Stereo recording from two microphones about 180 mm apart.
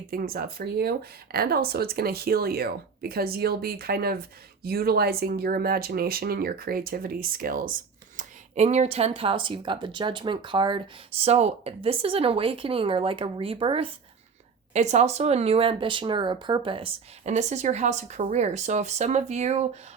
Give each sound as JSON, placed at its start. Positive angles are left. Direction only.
{"t": 0.1, "sound": "speech", "side_deg": -55}